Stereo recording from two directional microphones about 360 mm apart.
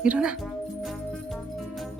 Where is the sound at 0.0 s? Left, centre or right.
Centre.